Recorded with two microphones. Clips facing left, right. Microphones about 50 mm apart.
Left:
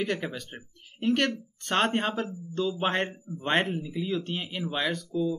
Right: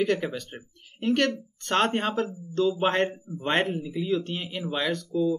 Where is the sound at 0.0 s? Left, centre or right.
Centre.